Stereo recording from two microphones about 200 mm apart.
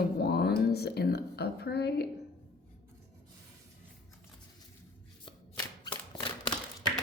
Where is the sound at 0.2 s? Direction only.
50° left (ahead or behind).